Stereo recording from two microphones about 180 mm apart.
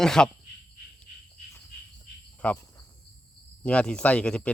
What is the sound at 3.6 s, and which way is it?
Speech, 5° left (ahead or behind).